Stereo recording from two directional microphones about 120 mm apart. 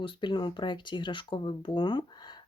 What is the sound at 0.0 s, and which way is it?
Speech, 40° left (ahead or behind).